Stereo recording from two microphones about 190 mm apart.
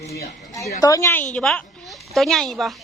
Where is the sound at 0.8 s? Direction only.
15° left (ahead or behind).